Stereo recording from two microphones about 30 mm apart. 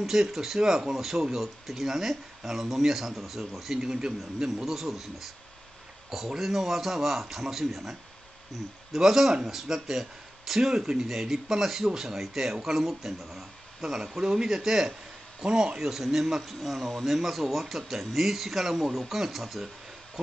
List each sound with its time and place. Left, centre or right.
0.0 s speech: centre
3.8 s a man's voice: right
4.6 s speech: centre
8.9 s speech: centre
15.4 s a man's voice: right
15.8 s speech: centre